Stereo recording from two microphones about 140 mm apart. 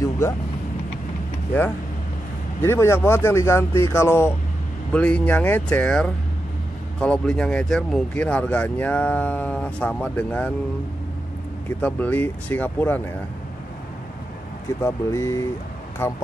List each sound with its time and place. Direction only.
2.6 s speech: 20° left (ahead or behind)
11.8 s speech: 10° left (ahead or behind)
14.8 s speech: 20° left (ahead or behind)